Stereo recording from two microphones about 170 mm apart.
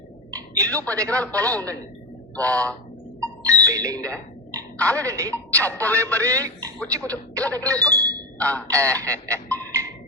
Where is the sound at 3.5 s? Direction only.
20° right (ahead or behind).